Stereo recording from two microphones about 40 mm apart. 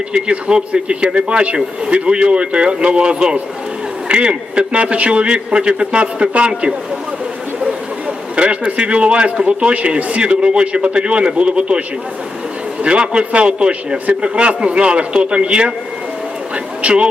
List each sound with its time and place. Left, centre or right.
0.1 s speech: right
8.4 s a man's voice: right
12.8 s speech: right
16.8 s speech: right